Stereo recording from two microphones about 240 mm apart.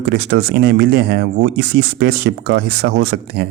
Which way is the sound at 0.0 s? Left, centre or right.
Right.